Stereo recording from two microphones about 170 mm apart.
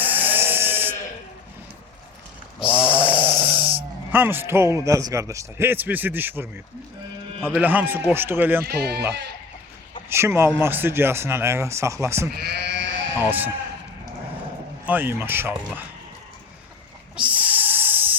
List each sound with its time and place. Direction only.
0.0 s sheep: 10° right (ahead or behind)
2.6 s snoring: 5° right (ahead or behind)
4.1 s a man's voice: 10° right (ahead or behind)
8.6 s speech: 70° right (ahead or behind)
10.1 s a man's voice: 15° right (ahead or behind)
12.3 s sheep: 70° right (ahead or behind); by 13.1 s 90° right
14.8 s a man's voice: 10° right (ahead or behind)
17.2 s a sound: 10° right (ahead or behind)